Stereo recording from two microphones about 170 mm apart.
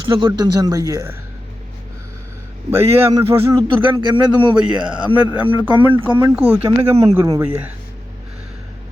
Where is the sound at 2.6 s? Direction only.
15° right (ahead or behind).